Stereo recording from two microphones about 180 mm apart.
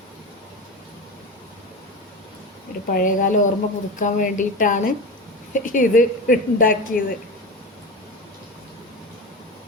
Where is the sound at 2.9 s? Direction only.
50° left (ahead or behind).